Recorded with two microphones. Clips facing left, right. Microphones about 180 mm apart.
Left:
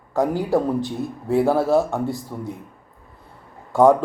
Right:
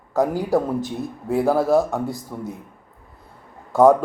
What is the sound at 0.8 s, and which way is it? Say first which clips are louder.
Speech: left 1 dB; 15° right (ahead or behind).